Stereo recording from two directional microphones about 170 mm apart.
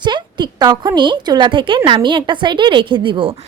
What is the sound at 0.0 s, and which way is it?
A woman's voice, 25° right (ahead or behind).